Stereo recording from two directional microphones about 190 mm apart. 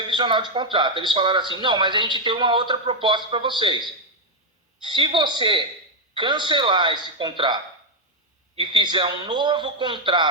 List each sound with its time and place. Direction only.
0.1 s a man's voice: 25° right (ahead or behind)